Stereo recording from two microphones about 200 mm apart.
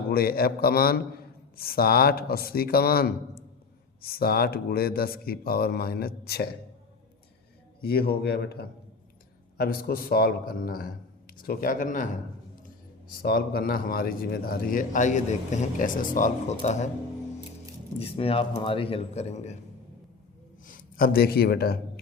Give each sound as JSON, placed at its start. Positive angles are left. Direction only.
{"t": 0.1, "sound": "speech", "side_deg": 50}
{"t": 7.9, "sound": "speech", "side_deg": 50}
{"t": 18.0, "sound": "a man's voice", "side_deg": 30}
{"t": 20.7, "sound": "a man's voice", "side_deg": 45}